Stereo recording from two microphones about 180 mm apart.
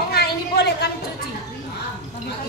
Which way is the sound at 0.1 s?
65° left (ahead or behind).